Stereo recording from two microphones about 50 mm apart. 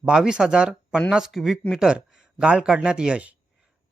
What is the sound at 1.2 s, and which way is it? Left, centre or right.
Speech, centre.